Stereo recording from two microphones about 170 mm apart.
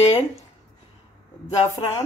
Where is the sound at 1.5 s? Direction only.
35° left (ahead or behind).